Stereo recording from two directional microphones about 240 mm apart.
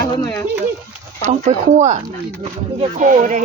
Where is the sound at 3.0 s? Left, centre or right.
Right.